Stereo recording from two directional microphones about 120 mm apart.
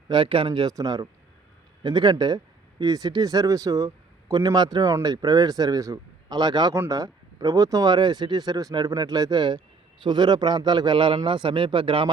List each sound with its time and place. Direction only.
0.1 s speech: 45° right (ahead or behind)